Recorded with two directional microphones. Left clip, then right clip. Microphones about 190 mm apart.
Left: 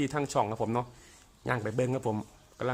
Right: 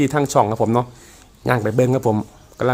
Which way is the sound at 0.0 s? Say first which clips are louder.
Right 13 dB; 15° right (ahead or behind).